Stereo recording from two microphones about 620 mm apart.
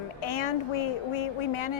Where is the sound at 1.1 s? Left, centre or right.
Left.